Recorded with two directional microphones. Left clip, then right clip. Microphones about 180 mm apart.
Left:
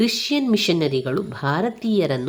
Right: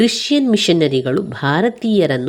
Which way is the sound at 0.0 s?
25° right (ahead or behind).